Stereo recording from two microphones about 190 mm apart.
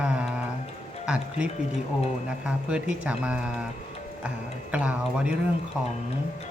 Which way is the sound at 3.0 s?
5° right (ahead or behind).